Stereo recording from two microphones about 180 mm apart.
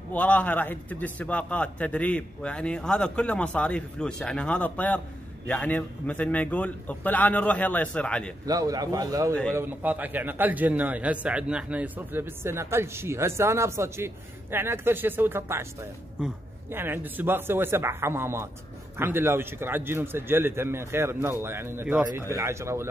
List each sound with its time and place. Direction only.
0.1 s a man's voice: 10° left (ahead or behind)
8.5 s a man's voice: 20° right (ahead or behind)